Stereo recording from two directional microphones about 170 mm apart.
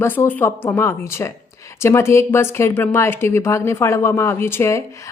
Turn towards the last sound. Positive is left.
turn(degrees=15)  # may be behind; listen again after turning